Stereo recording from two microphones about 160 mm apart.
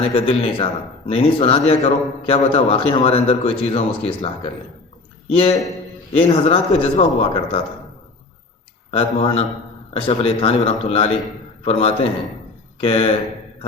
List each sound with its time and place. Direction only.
0.0 s a man's voice: 35° left (ahead or behind)
8.9 s a man's voice: 40° left (ahead or behind)